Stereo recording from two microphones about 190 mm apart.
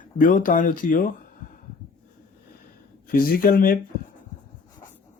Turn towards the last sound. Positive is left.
turn(degrees=50)  # may be behind; listen again after turning